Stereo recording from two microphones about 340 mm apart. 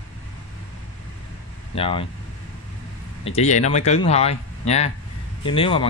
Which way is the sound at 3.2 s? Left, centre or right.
Centre.